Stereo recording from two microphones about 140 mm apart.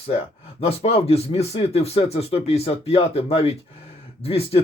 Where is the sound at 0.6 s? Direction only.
45° left (ahead or behind).